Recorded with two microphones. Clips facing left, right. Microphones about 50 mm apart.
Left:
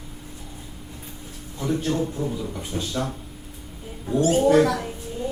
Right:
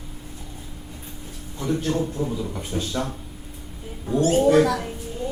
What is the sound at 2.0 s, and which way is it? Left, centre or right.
Speech, centre.